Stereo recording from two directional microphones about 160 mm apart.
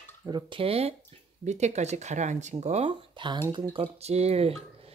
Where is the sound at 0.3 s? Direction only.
35° right (ahead or behind).